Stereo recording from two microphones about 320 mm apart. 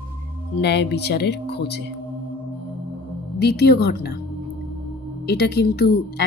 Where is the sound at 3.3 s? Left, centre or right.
Left.